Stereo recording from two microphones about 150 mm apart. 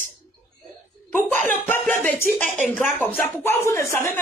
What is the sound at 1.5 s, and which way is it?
Speech, 10° left (ahead or behind).